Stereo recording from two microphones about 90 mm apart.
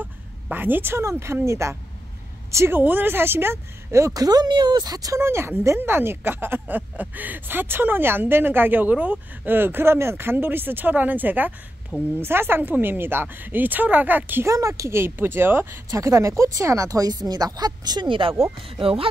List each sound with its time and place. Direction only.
0.0 s a sound: 20° right (ahead or behind)
1.0 s speech: 30° right (ahead or behind)
5.2 s speech: 25° right (ahead or behind)
14.4 s speech: 35° right (ahead or behind)
18.6 s speech: 90° right